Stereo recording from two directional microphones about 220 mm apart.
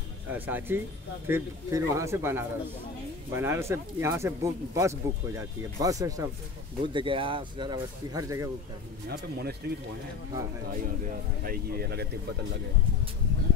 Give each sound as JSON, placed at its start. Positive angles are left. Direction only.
{"t": 0.3, "sound": "speech", "side_deg": -10}
{"t": 9.1, "sound": "speech", "side_deg": -45}
{"t": 11.4, "sound": "speech", "side_deg": -45}